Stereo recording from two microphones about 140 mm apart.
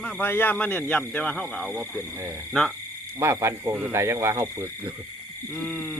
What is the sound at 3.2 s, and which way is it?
Speech, 20° right (ahead or behind).